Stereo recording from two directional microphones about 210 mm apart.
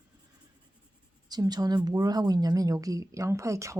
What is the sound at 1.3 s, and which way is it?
A woman's voice, 20° right (ahead or behind).